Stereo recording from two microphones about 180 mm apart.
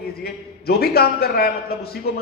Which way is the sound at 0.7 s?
60° left (ahead or behind).